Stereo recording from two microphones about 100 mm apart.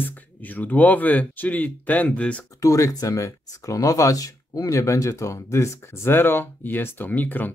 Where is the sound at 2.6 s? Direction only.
35° left (ahead or behind).